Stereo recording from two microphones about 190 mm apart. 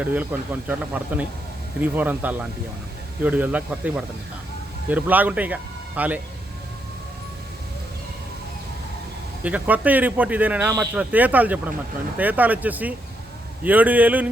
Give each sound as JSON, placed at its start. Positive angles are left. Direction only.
{"t": 0.0, "sound": "a man's voice", "side_deg": -10}
{"t": 9.4, "sound": "a man's voice", "side_deg": -10}